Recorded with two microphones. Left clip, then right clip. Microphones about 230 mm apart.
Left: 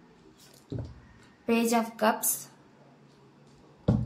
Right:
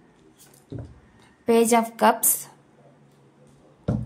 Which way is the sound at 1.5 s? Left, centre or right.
Right.